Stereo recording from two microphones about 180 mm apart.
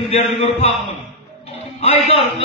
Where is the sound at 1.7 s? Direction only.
35° left (ahead or behind).